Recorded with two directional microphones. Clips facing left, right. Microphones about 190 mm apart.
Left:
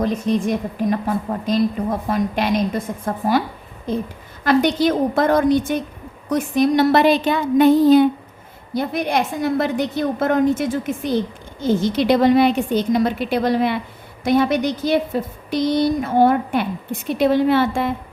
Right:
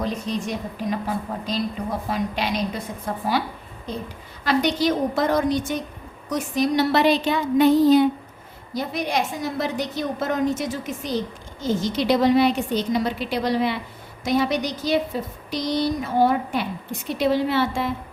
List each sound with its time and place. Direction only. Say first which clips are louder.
0.0 s a woman's voice: left 7 dB; 50° left (ahead or behind)
3.9 s a woman's voice: left 8 dB; 50° left (ahead or behind)